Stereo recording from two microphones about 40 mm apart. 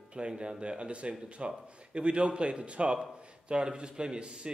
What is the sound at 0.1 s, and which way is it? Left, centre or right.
A man's voice, right.